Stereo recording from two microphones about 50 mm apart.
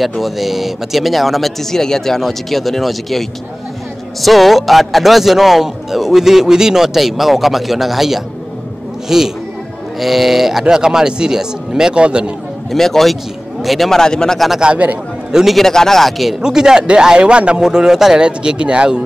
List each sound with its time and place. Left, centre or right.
0.0 s a man's voice: centre
12.7 s a man's voice: centre
14.6 s a man's voice: right
15.5 s a man's voice: centre
16.3 s speech: centre